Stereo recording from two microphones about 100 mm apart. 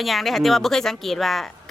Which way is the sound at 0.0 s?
Centre (ahead or behind).